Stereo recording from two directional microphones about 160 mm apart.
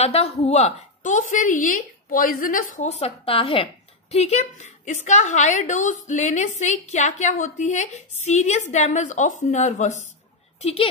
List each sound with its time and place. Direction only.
0.0 s a woman's voice: 40° left (ahead or behind)
10.6 s speech: 35° left (ahead or behind)